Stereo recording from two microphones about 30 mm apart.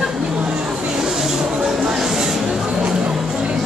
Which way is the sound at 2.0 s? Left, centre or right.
Centre.